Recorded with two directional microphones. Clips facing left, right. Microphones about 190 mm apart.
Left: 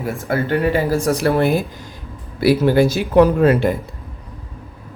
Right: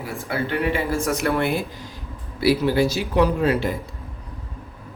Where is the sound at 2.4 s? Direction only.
50° left (ahead or behind).